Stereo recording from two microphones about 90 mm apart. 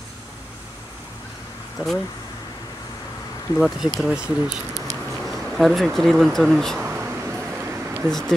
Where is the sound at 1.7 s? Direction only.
5° left (ahead or behind).